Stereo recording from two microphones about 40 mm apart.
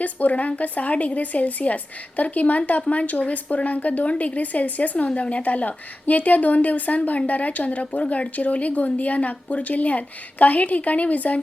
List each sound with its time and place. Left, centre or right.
0.0 s a woman's voice: left